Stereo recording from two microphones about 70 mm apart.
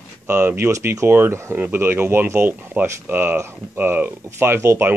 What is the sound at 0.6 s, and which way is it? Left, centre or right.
Speech, right.